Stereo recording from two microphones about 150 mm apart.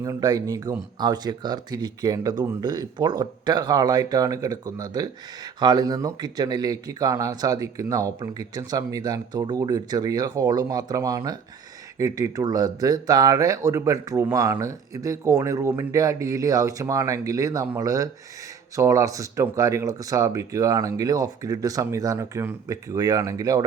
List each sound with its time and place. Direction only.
0.0 s speech: 25° right (ahead or behind)